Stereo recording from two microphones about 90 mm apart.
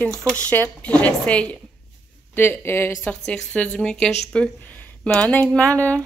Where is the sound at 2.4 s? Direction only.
25° left (ahead or behind).